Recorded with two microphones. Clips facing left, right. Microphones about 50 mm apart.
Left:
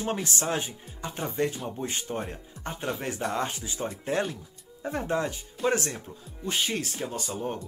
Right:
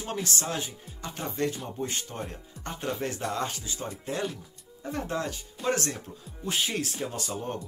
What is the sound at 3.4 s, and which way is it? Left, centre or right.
Speech, left.